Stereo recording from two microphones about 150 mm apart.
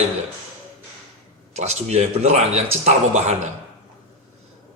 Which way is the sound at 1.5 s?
45° right (ahead or behind).